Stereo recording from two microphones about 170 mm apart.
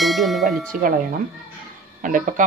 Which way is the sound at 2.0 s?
50° right (ahead or behind).